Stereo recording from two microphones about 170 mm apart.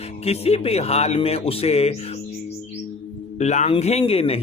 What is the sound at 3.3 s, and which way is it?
Speech, 45° left (ahead or behind).